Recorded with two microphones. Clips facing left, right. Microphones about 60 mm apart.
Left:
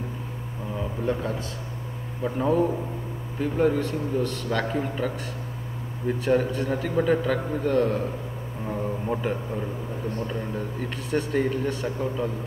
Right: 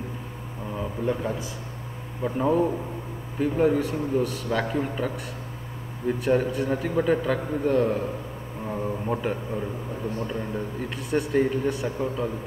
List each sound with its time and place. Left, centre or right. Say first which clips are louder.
0.7 s a man's voice: even; centre